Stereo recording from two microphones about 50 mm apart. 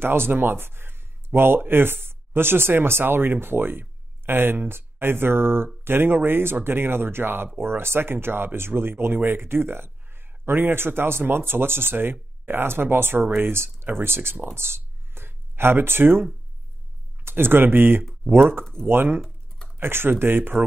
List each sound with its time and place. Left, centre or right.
0.0 s speech: right
14.5 s a sound: right
17.2 s speech: right